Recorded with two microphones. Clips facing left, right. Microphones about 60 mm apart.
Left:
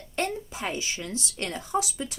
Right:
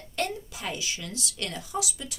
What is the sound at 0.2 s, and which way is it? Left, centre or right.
Speech, left.